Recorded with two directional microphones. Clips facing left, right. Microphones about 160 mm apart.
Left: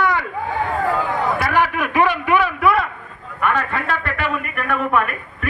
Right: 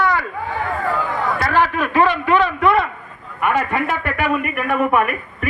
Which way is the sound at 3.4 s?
10° right (ahead or behind).